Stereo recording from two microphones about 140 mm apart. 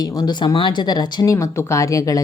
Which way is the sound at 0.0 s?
30° left (ahead or behind).